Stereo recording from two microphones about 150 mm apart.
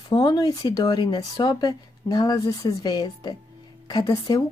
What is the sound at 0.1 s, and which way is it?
Speech, 25° left (ahead or behind).